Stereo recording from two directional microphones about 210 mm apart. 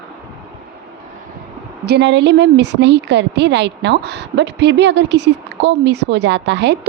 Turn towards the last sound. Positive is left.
turn(degrees=-55)  # may be behind; listen again after turning